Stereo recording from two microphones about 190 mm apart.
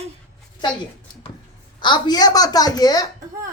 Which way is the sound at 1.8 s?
20° left (ahead or behind).